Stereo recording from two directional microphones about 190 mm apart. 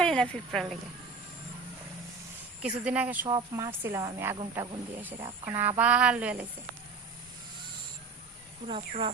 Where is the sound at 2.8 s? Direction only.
5° right (ahead or behind).